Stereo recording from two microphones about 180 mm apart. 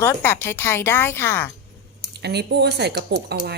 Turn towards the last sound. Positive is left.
turn(degrees=-65)  # may be behind; listen again after turning